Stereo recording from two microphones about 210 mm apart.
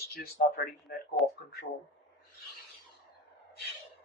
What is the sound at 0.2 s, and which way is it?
Speech, 45° left (ahead or behind).